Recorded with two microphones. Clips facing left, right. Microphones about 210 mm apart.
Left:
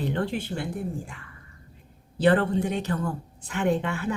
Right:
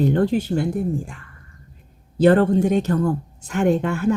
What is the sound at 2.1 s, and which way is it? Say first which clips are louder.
Speech: right 7 dB; 45° right (ahead or behind).